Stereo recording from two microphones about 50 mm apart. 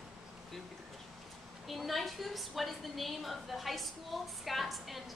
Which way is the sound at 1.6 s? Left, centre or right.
Centre.